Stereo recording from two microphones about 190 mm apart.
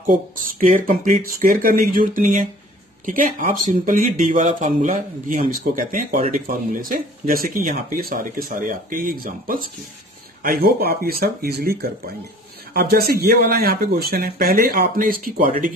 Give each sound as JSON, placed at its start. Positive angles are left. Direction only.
{"t": 0.0, "sound": "speech", "side_deg": -45}